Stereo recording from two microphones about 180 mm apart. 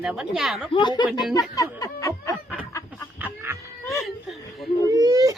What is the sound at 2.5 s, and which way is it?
Chicken, 10° left (ahead or behind).